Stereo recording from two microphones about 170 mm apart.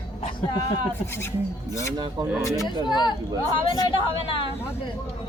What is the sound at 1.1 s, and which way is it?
Speech, 15° left (ahead or behind).